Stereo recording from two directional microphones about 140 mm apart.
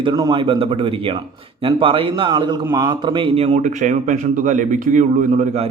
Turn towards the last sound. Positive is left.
turn(degrees=-55)  # may be behind; listen again after turning